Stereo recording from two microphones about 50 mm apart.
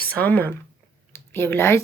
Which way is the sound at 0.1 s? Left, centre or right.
Left.